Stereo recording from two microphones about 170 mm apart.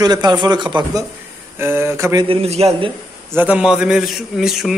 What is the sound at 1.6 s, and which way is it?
Speech, 15° right (ahead or behind).